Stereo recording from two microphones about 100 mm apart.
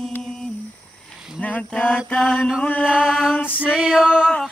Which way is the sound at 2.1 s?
5° left (ahead or behind).